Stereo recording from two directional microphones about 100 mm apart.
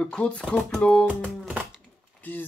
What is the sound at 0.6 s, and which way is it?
Speech, centre (ahead or behind).